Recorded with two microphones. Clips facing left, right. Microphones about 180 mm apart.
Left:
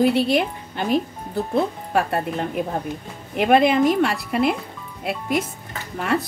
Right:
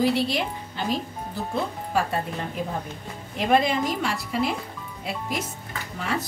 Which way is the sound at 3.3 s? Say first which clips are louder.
Left 5 dB; 60° left (ahead or behind).